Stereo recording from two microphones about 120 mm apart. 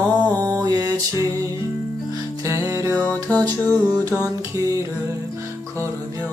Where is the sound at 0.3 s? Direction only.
30° right (ahead or behind).